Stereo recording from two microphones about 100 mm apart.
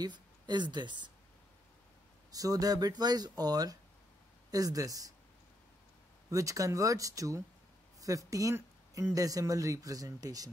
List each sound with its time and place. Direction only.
0.0 s a woman's voice: 45° right (ahead or behind)
2.3 s speech: 40° right (ahead or behind)
6.3 s speech: 35° right (ahead or behind)